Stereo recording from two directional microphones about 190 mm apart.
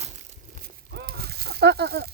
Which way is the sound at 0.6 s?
55° right (ahead or behind).